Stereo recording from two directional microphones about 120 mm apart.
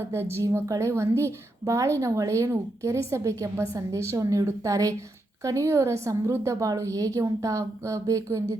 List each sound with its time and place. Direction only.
0.1 s a woman's voice: 20° right (ahead or behind)